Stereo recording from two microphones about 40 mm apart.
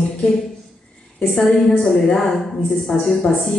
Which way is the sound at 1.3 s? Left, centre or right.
Centre.